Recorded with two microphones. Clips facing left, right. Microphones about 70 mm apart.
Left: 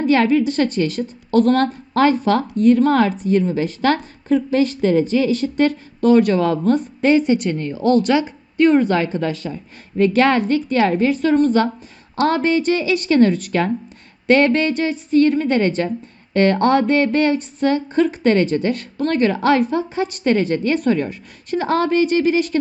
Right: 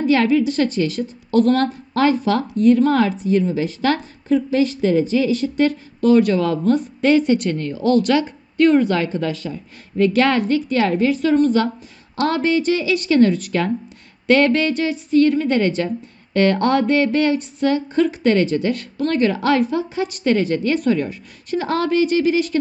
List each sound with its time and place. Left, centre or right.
0.1 s a woman's voice: left
7.5 s speech: left
8.0 s a woman's voice: centre
8.7 s speech: left
16.6 s speech: left